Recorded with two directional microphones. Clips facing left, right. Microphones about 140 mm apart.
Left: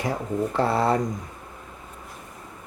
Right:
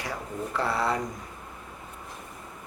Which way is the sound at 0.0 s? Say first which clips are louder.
Left 8 dB; 25° left (ahead or behind).